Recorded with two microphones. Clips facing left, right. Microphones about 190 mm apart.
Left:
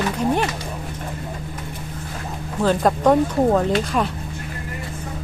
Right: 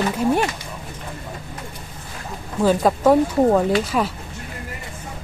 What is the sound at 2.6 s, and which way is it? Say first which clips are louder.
Speech: right 1 dB; 5° right (ahead or behind).